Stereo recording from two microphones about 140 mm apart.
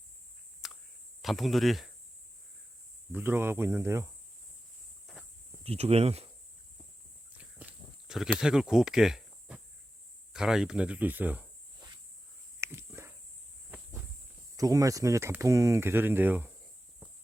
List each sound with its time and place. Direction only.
0.6 s a sound: centre (ahead or behind)
1.2 s speech: centre (ahead or behind)
3.1 s speech: 15° right (ahead or behind)
5.1 s cricket: centre (ahead or behind)
5.6 s speech: 45° right (ahead or behind)
7.3 s a sound: 5° right (ahead or behind)
10.3 s speech: 5° right (ahead or behind)
12.5 s a sound: 20° right (ahead or behind)
14.5 s speech: 25° right (ahead or behind)